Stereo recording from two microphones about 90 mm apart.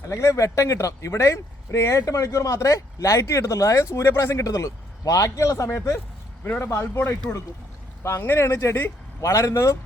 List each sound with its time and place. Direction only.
0.1 s speech: 35° left (ahead or behind)
6.4 s speech: 20° left (ahead or behind)